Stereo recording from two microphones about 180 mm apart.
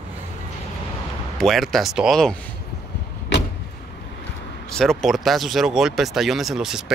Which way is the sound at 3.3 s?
75° left (ahead or behind).